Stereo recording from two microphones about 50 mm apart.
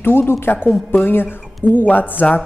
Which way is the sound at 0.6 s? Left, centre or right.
Left.